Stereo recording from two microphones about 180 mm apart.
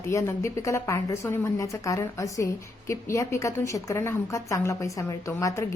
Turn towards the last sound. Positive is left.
turn(degrees=15)  # may be behind; listen again after turning